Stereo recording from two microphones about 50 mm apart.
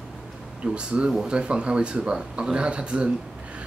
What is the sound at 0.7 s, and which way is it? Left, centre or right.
Speech, centre.